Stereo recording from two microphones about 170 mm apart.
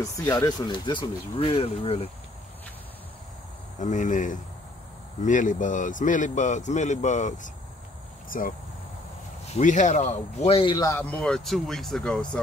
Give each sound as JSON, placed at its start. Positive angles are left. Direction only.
{"t": 0.0, "sound": "speech", "side_deg": 20}
{"t": 3.8, "sound": "speech", "side_deg": 45}
{"t": 9.6, "sound": "speech", "side_deg": 45}